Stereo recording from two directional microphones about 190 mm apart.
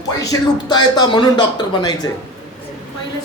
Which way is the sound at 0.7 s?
20° left (ahead or behind).